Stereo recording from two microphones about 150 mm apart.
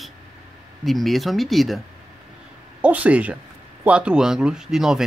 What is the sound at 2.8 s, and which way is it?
Speech, 10° right (ahead or behind).